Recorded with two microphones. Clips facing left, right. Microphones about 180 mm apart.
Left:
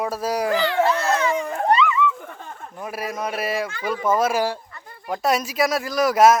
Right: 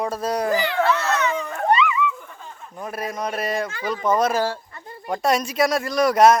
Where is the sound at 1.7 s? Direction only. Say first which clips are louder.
Left 1 dB; 5° right (ahead or behind).